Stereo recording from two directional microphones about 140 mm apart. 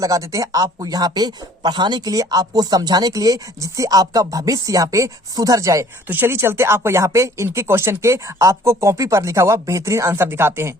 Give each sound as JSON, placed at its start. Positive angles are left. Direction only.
{"t": 0.0, "sound": "speech", "side_deg": -25}